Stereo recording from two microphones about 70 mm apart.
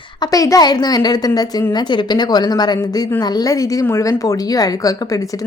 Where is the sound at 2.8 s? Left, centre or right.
Left.